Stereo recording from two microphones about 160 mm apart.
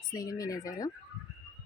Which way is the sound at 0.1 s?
20° left (ahead or behind).